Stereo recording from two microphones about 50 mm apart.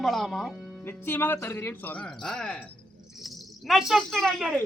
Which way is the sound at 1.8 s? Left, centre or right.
Left.